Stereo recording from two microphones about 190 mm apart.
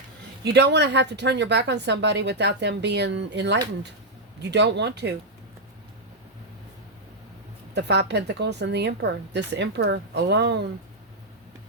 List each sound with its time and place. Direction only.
0.4 s a woman's voice: 65° right (ahead or behind)
7.7 s a woman's voice: 65° right (ahead or behind)